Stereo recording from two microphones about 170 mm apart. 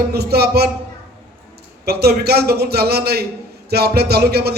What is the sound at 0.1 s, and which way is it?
Speech, 70° right (ahead or behind).